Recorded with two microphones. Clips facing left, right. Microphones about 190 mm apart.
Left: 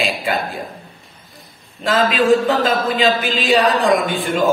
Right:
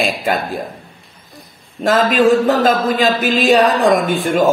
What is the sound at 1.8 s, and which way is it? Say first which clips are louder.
A man's voice: right 3 dB; 45° right (ahead or behind).